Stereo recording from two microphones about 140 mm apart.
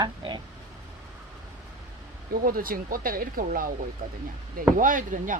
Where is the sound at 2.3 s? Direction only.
90° right.